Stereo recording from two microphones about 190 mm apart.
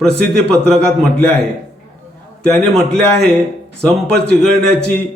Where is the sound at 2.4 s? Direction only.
5° left (ahead or behind).